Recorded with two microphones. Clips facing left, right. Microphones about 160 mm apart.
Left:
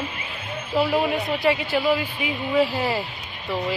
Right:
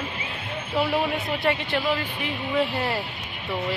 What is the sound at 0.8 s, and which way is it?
A woman's voice, centre (ahead or behind).